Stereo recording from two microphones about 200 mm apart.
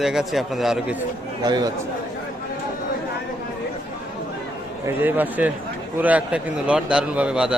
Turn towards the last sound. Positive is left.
turn(degrees=-5)  # may be behind; listen again after turning